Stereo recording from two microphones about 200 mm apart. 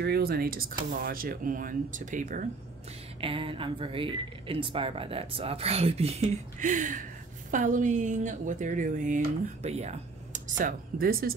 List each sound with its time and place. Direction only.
0.0 s speech: 50° right (ahead or behind)
3.2 s speech: 25° right (ahead or behind)
10.6 s speech: 45° right (ahead or behind)